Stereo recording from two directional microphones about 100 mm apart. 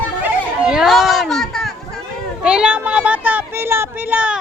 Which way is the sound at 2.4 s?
10° right (ahead or behind).